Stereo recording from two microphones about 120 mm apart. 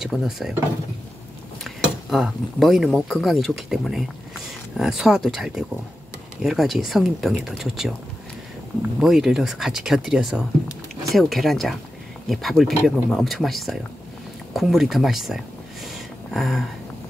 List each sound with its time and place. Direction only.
0.0 s speech: 5° right (ahead or behind)
1.6 s speech: centre (ahead or behind)
9.0 s speech: 5° right (ahead or behind)
14.5 s a sound: centre (ahead or behind)